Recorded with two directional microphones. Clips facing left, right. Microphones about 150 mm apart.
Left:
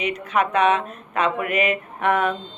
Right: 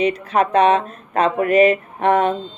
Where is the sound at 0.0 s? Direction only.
30° right (ahead or behind).